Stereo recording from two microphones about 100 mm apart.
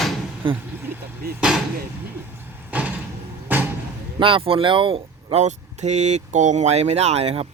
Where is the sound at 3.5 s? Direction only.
20° right (ahead or behind).